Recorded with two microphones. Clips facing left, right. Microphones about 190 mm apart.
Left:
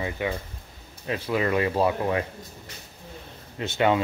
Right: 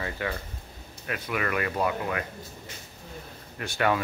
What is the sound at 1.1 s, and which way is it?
Speech, 25° left (ahead or behind).